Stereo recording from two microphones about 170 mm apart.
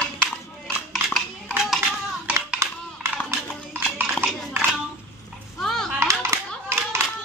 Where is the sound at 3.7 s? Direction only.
10° right (ahead or behind).